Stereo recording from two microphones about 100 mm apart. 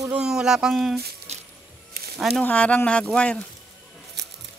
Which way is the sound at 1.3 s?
90° right.